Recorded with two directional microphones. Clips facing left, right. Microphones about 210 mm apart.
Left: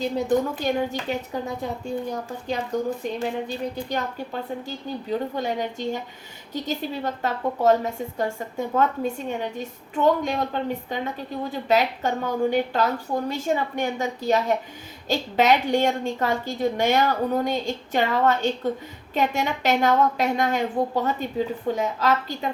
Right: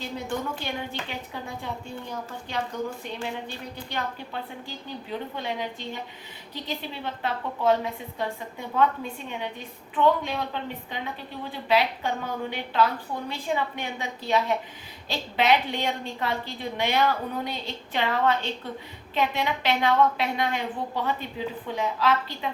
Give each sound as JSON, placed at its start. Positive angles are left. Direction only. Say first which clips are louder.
{"t": 0.0, "sound": "a woman's voice", "louder": "left 9 dB", "side_deg": 40}
{"t": 3.0, "sound": "a woman's voice", "louder": "left 6 dB", "side_deg": 40}